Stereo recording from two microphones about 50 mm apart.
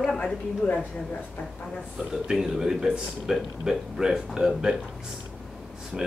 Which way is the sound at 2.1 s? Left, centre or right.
Centre.